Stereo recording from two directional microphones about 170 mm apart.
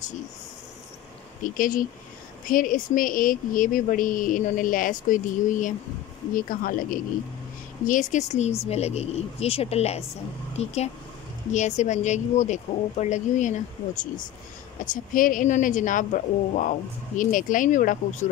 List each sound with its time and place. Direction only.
1.4 s speech: 55° left (ahead or behind)
14.8 s speech: 50° left (ahead or behind)